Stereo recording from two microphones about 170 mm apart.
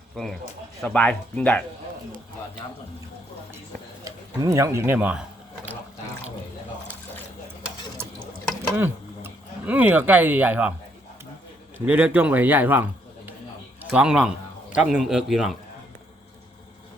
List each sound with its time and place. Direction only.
0.2 s a man's voice: centre (ahead or behind)
4.0 s speech: 20° right (ahead or behind)
8.7 s speech: 10° right (ahead or behind)
11.9 s a man's voice: 10° right (ahead or behind)